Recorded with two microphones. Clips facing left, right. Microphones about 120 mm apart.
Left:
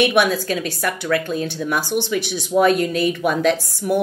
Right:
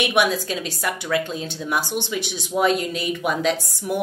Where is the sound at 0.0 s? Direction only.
20° right (ahead or behind).